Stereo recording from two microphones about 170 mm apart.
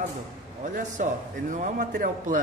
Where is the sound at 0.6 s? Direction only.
45° right (ahead or behind).